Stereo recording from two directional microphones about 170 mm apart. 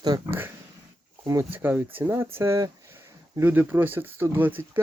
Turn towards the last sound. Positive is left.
turn(degrees=-10)  # may be behind; listen again after turning